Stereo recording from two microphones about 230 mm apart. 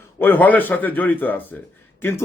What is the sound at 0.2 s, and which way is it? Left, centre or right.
Speech, centre.